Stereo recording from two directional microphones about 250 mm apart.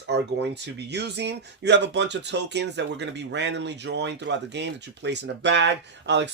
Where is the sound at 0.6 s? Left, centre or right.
Right.